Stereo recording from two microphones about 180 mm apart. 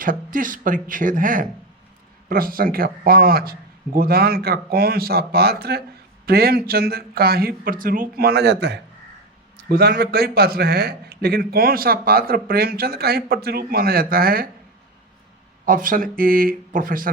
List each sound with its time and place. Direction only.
0.0 s a man's voice: 50° right (ahead or behind); by 8.8 s 70° right (ahead or behind)
9.6 s a man's voice: 60° right (ahead or behind)
15.6 s speech: 50° right (ahead or behind)